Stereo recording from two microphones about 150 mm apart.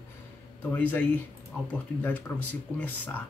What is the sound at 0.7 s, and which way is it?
Speech, 10° left (ahead or behind).